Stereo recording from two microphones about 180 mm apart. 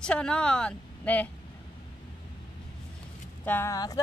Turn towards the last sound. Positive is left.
turn(degrees=20)  # may be behind; listen again after turning